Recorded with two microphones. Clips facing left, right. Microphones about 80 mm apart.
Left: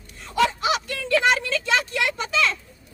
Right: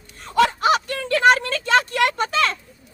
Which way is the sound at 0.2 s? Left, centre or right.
Right.